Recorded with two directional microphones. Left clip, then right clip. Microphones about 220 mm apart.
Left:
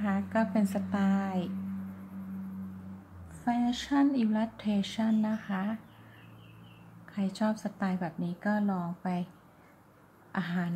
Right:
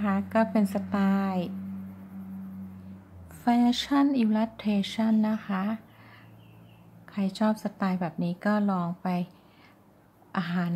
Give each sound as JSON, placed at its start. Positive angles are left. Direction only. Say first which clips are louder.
{"t": 0.0, "sound": "speech", "louder": "right 5 dB", "side_deg": -15}
{"t": 3.4, "sound": "speech", "louder": "right 6 dB", "side_deg": -25}
{"t": 7.1, "sound": "speech", "louder": "right 4 dB", "side_deg": -15}
{"t": 10.3, "sound": "speech", "louder": "right 4 dB", "side_deg": -15}